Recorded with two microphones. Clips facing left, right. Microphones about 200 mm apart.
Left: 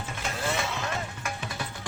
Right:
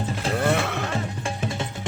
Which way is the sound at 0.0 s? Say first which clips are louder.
Right 8 dB; 35° right (ahead or behind).